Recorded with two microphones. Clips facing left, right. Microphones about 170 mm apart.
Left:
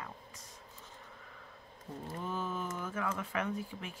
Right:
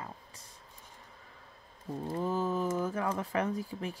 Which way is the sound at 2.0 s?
35° right (ahead or behind).